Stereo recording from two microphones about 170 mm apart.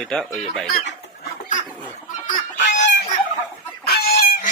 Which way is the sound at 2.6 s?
90° left.